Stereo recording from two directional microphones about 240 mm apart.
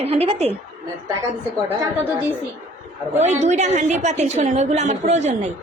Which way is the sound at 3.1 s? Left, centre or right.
Right.